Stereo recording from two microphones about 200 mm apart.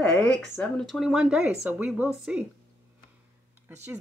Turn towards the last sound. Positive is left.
turn(degrees=-10)  # may be behind; listen again after turning